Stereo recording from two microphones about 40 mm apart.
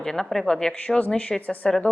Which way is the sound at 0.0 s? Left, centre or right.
Centre.